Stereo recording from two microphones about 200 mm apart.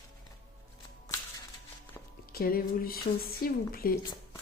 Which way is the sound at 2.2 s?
50° left (ahead or behind).